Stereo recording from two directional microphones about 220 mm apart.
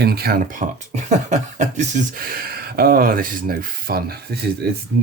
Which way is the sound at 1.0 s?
30° right (ahead or behind).